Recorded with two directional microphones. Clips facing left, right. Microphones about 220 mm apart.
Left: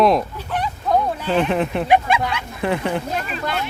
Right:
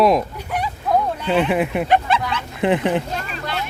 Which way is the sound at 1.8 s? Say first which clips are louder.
Left 1 dB; 10° left (ahead or behind).